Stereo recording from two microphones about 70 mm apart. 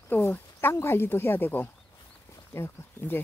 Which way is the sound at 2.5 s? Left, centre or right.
Left.